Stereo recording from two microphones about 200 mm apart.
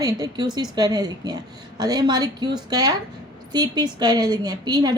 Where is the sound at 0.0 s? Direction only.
20° right (ahead or behind).